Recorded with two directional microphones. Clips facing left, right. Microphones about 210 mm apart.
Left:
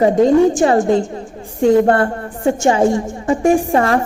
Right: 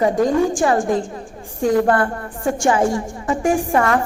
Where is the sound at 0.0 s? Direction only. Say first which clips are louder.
Left 5 dB; 25° left (ahead or behind).